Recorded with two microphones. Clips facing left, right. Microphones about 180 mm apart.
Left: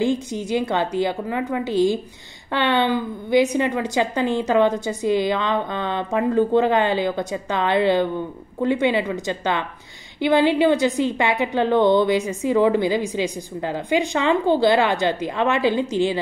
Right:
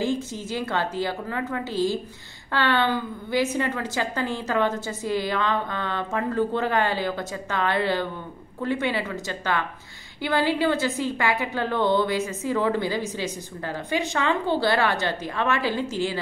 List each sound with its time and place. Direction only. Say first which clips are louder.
0.0 s a woman's voice: left 5 dB; 15° left (ahead or behind)